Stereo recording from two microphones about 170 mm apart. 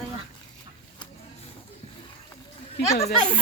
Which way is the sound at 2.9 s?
40° left (ahead or behind).